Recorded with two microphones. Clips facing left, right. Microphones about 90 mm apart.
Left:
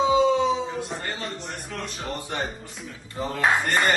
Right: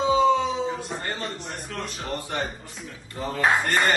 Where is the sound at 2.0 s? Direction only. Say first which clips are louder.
Right 1 dB; 20° left (ahead or behind).